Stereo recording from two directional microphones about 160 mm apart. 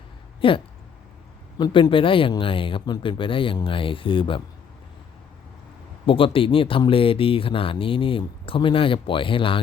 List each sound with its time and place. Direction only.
0.4 s speech: 35° left (ahead or behind)
6.1 s speech: 35° left (ahead or behind)